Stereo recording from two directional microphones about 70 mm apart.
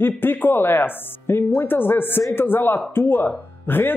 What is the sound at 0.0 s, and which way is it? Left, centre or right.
Speech, left.